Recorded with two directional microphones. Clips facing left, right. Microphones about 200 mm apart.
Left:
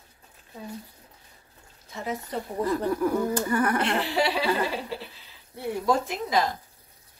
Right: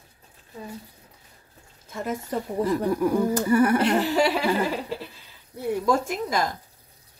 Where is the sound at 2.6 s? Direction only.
10° right (ahead or behind).